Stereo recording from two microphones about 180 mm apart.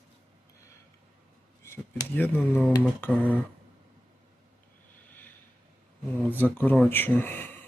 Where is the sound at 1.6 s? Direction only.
10° left (ahead or behind).